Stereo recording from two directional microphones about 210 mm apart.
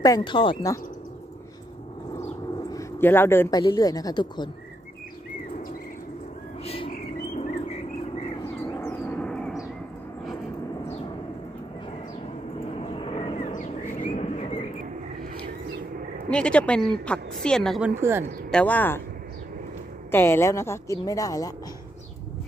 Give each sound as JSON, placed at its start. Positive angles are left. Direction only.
{"t": 0.0, "sound": "speech", "side_deg": 20}
{"t": 2.7, "sound": "speech", "side_deg": 10}
{"t": 6.6, "sound": "bird", "side_deg": 25}
{"t": 6.9, "sound": "cricket", "side_deg": 35}
{"t": 8.7, "sound": "a sound", "side_deg": 10}
{"t": 12.7, "sound": "vehicle", "side_deg": 25}
{"t": 13.5, "sound": "bird", "side_deg": 40}
{"t": 16.3, "sound": "a woman's voice", "side_deg": 5}
{"t": 18.5, "sound": "speech", "side_deg": 5}
{"t": 20.1, "sound": "speech", "side_deg": 10}